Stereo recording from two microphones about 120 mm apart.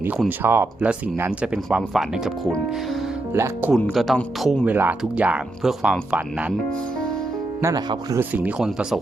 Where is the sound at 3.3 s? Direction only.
20° right (ahead or behind).